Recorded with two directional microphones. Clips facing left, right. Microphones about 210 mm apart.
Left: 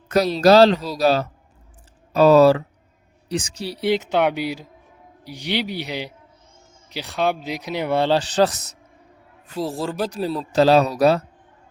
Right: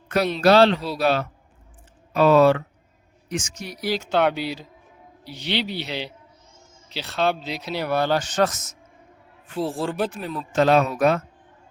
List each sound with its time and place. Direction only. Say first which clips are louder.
0.1 s speech: left 3 dB; 40° left (ahead or behind)
10.1 s speech: left 6 dB; 35° left (ahead or behind)